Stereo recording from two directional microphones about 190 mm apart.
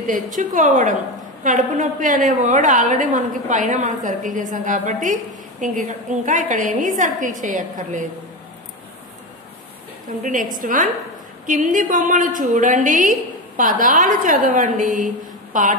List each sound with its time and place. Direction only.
0.0 s a woman's voice: 45° right (ahead or behind)
10.0 s a woman's voice: 45° right (ahead or behind)